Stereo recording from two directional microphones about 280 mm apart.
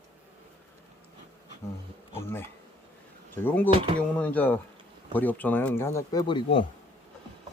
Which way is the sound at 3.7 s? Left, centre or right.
Centre.